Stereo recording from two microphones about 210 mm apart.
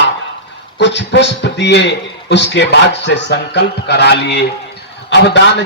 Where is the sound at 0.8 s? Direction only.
55° left (ahead or behind).